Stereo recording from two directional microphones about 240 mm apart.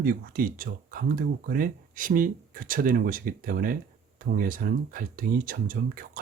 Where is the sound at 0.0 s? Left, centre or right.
Right.